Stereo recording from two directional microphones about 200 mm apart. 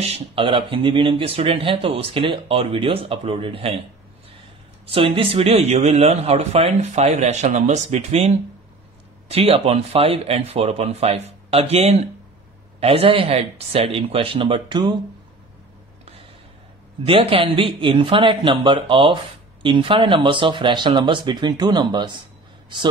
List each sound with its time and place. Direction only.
0.0 s speech: 30° right (ahead or behind)
4.8 s speech: 25° right (ahead or behind)
17.0 s speech: 30° right (ahead or behind)